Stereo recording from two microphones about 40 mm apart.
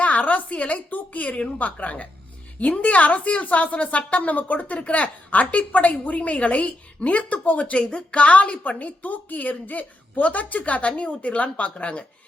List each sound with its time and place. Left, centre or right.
0.0 s a woman's voice: left